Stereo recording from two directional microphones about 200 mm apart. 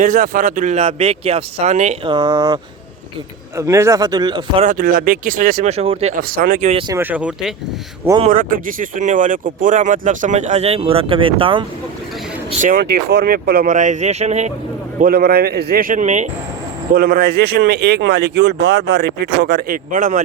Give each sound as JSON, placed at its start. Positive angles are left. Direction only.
{"t": 0.0, "sound": "speech", "side_deg": -40}
{"t": 2.1, "sound": "speech", "side_deg": -20}
{"t": 3.6, "sound": "speech", "side_deg": -15}
{"t": 4.6, "sound": "speech", "side_deg": -40}
{"t": 5.6, "sound": "speech", "side_deg": -30}
{"t": 6.3, "sound": "speech", "side_deg": -45}
{"t": 6.8, "sound": "speech", "side_deg": -10}
{"t": 8.2, "sound": "speech", "side_deg": -40}
{"t": 12.5, "sound": "speech", "side_deg": -40}
{"t": 15.0, "sound": "speech", "side_deg": -50}
{"t": 16.9, "sound": "speech", "side_deg": -50}